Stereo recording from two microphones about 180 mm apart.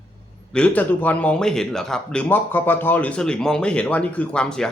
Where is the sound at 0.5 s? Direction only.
5° left (ahead or behind).